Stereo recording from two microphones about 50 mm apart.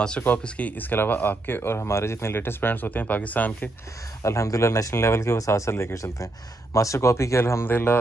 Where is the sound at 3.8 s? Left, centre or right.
Left.